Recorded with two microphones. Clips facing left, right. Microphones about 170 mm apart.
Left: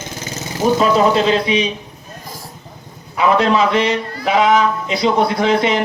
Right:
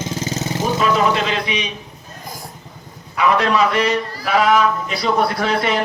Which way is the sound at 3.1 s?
25° left (ahead or behind).